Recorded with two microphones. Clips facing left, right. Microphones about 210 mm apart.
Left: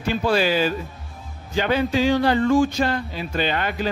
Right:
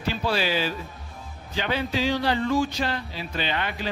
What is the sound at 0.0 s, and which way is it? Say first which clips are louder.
Speech: left 5 dB; 50° left (ahead or behind).